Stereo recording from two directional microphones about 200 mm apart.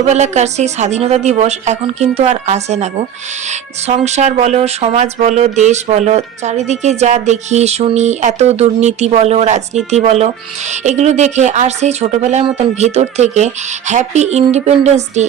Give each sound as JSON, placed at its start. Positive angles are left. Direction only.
{"t": 0.1, "sound": "speech", "side_deg": -35}